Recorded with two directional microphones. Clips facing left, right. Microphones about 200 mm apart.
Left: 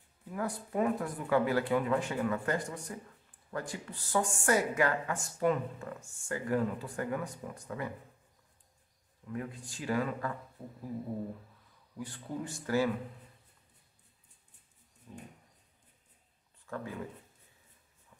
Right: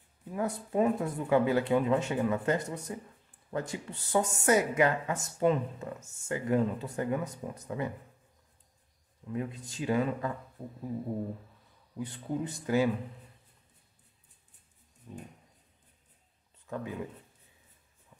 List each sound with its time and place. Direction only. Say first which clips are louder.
0.3 s speech: right 3 dB; 25° right (ahead or behind)
9.3 s speech: right 4 dB; 20° right (ahead or behind)
12.0 s speech: right 5 dB; 20° right (ahead or behind)
15.1 s a sound: right 4 dB; 15° right (ahead or behind)
16.6 s speech: right 3 dB; 20° right (ahead or behind)